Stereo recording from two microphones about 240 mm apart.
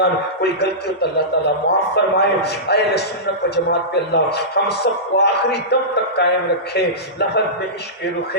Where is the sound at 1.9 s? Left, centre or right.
Left.